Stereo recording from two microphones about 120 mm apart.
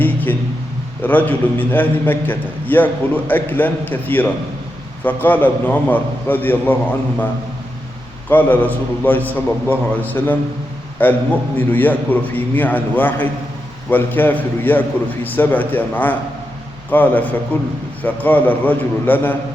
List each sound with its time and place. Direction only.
0.0 s a sound: 15° left (ahead or behind)
1.0 s a man's voice: 15° left (ahead or behind)
8.3 s a man's voice: 15° left (ahead or behind)